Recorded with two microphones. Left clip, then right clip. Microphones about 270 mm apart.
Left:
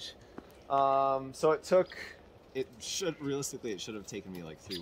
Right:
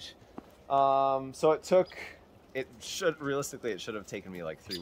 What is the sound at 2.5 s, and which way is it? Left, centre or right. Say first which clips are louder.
Speech: even; centre.